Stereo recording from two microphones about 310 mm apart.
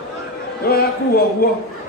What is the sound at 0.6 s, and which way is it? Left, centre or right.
Speech, left.